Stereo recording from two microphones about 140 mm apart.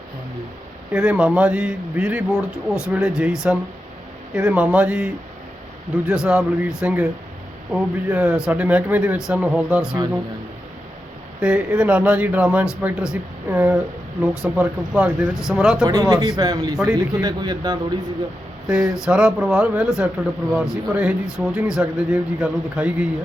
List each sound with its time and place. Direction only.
0.9 s speech: 5° right (ahead or behind)
11.3 s speech: 5° right (ahead or behind)
15.9 s speech: 25° right (ahead or behind)
16.7 s speech: centre (ahead or behind)
17.0 s speech: 25° right (ahead or behind)
18.7 s speech: 5° right (ahead or behind)